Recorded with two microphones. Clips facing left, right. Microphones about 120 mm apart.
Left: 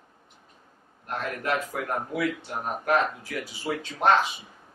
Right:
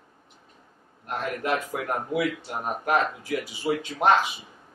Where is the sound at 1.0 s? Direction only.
15° right (ahead or behind).